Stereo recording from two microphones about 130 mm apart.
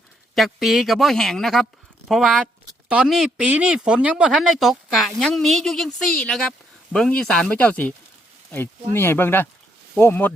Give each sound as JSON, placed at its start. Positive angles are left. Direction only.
{"t": 0.3, "sound": "speech", "side_deg": 0}
{"t": 9.0, "sound": "speech", "side_deg": 15}